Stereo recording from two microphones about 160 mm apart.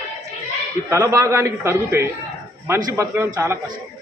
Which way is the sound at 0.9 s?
20° right (ahead or behind).